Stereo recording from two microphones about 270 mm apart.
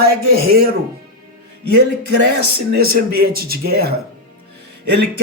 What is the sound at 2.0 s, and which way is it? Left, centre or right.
Speech, right.